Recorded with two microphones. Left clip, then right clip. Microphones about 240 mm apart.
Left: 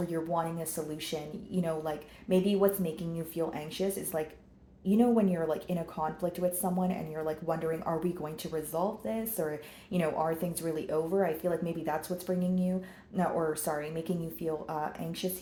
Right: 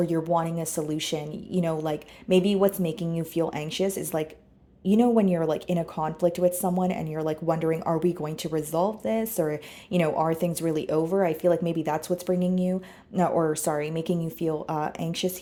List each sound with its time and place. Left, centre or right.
0.1 s speech: right